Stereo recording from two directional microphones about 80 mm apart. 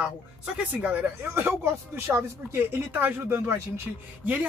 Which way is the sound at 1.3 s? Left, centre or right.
Right.